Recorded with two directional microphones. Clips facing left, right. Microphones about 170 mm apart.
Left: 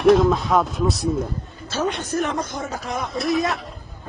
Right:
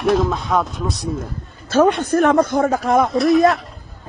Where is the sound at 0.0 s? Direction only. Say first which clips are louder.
Left 3 dB; centre (ahead or behind).